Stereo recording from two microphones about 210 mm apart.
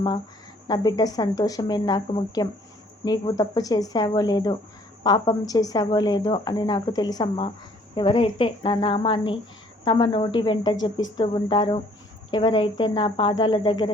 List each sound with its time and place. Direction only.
0.7 s speech: 20° left (ahead or behind)